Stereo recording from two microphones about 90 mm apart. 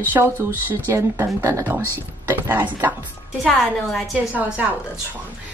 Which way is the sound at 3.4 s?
5° left (ahead or behind).